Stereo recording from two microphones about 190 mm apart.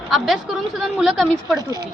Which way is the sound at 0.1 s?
Centre (ahead or behind).